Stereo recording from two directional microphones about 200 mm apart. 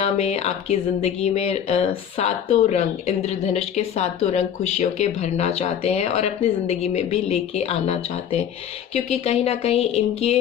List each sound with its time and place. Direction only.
0.0 s speech: 35° left (ahead or behind)